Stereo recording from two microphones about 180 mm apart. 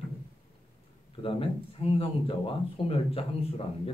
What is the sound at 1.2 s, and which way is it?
Speech, 30° left (ahead or behind).